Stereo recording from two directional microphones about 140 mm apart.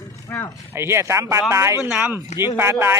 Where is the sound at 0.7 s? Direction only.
20° right (ahead or behind).